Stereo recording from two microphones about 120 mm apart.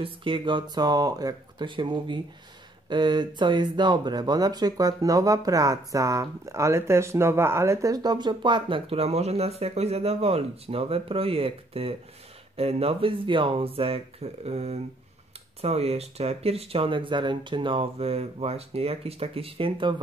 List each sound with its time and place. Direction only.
0.0 s speech: 45° right (ahead or behind)